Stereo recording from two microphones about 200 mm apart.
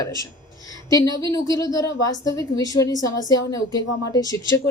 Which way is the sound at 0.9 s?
15° left (ahead or behind).